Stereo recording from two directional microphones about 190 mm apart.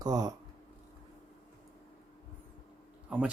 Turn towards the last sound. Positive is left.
turn(degrees=-5)  # may be behind; listen again after turning